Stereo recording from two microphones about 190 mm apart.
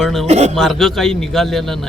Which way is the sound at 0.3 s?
35° right (ahead or behind).